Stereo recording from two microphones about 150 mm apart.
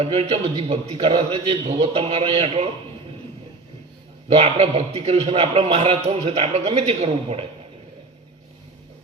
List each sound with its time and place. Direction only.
0.0 s a man's voice: 40° right (ahead or behind)
4.3 s a man's voice: 45° right (ahead or behind)